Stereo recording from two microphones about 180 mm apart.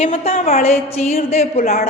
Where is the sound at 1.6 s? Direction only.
55° left (ahead or behind).